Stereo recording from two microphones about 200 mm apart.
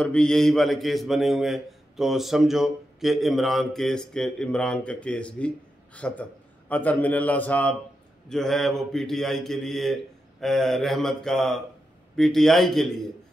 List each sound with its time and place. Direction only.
0.0 s a man's voice: 5° left (ahead or behind)